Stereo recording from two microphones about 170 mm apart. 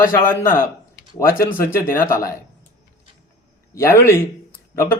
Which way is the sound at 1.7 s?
15° left (ahead or behind).